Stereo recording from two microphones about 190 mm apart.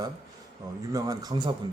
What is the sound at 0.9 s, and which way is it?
Speech, 20° right (ahead or behind).